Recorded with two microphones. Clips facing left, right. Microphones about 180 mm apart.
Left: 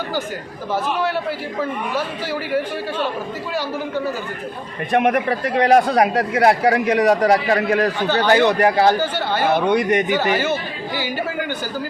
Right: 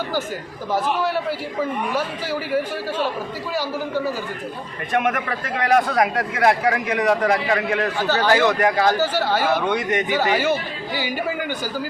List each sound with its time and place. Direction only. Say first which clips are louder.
2.5 s speech: left 1 dB; 10° right (ahead or behind)
4.9 s a man's voice: left 5 dB; 20° left (ahead or behind); by 7.9 s 35° left (ahead or behind)
8.3 s a man's voice: left 3 dB; 20° left (ahead or behind)
9.0 s speech: right 1 dB; 5° right (ahead or behind)
9.5 s a man's voice: left 3 dB; 20° left (ahead or behind)
10.1 s speech: left 1 dB; 10° right (ahead or behind)